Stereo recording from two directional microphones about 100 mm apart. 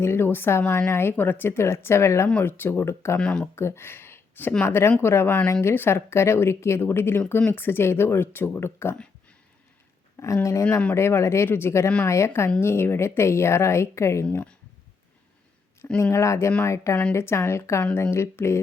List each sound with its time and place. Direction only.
0.0 s a woman's voice: 25° left (ahead or behind)
3.2 s speech: 10° left (ahead or behind)
3.5 s a woman's voice: 25° left (ahead or behind)
10.3 s a woman's voice: 30° left (ahead or behind)
14.3 s speech: 10° left (ahead or behind)
16.1 s a woman's voice: 30° left (ahead or behind)
16.5 s speech: 20° left (ahead or behind)
16.7 s a woman's voice: 30° left (ahead or behind)